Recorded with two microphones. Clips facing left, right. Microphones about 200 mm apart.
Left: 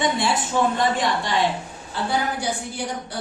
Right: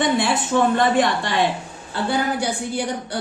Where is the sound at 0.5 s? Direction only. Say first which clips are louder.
Right 4 dB; 70° right (ahead or behind).